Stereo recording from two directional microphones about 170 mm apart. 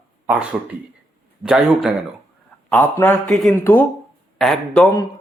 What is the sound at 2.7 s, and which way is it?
Speech, 10° left (ahead or behind).